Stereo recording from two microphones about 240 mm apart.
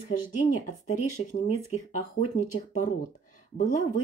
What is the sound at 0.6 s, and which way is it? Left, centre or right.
Speech, left.